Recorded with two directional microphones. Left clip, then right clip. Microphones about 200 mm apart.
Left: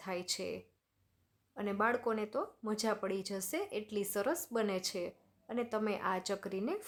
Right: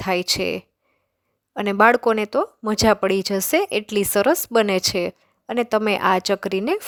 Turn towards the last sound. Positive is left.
turn(degrees=-45)  # may be behind; listen again after turning